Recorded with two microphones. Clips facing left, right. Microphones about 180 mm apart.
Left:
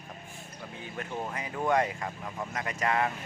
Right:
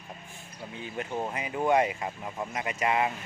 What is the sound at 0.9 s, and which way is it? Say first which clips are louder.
Speech: right 3 dB; 20° right (ahead or behind).